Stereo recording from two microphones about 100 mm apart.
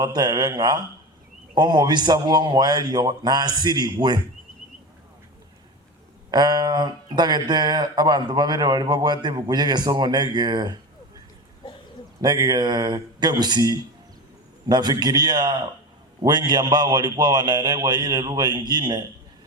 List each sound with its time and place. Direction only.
0.0 s speech: 45° right (ahead or behind)
6.3 s speech: 45° right (ahead or behind)
12.2 s speech: 45° right (ahead or behind)